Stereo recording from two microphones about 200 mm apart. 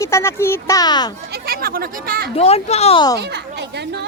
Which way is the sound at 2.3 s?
30° left (ahead or behind).